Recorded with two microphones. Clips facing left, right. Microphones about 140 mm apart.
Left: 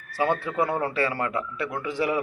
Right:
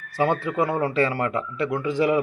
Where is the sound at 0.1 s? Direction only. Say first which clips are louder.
Right 3 dB; 20° right (ahead or behind).